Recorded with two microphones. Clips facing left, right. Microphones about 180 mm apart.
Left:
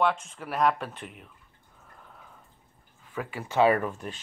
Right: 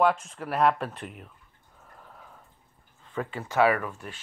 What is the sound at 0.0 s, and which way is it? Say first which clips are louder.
Speech: right 3 dB; centre (ahead or behind).